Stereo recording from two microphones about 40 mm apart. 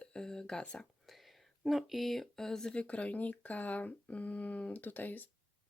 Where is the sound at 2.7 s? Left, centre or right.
Left.